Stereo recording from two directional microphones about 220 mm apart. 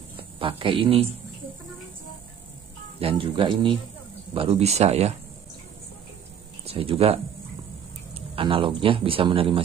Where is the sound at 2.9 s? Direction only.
25° right (ahead or behind).